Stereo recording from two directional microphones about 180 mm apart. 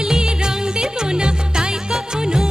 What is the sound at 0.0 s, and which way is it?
Music, 5° right (ahead or behind).